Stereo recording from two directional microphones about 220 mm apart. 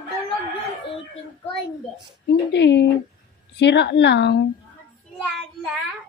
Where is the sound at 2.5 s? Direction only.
50° left (ahead or behind).